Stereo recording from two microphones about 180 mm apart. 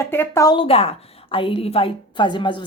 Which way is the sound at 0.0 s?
15° left (ahead or behind).